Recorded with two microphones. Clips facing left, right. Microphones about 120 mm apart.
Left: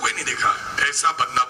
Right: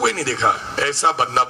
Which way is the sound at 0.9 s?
25° right (ahead or behind).